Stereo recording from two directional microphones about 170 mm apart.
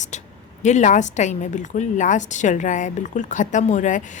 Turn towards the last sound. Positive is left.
turn(degrees=45)  # may be behind; listen again after turning